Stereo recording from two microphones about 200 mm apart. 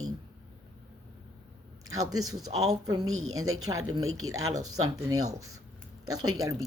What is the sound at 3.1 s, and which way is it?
Speech, 90° right.